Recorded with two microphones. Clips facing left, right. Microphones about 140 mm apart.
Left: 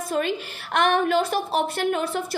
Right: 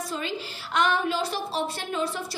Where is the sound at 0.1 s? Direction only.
55° left (ahead or behind).